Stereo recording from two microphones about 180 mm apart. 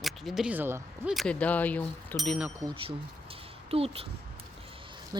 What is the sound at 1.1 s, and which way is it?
Speech, 5° left (ahead or behind).